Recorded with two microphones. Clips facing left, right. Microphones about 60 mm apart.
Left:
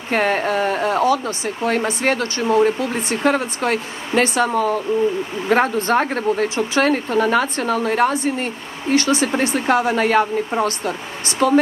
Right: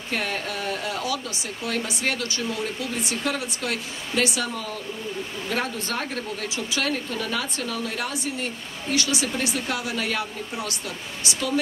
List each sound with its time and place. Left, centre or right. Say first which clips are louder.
0.1 s speech: left 10 dB; left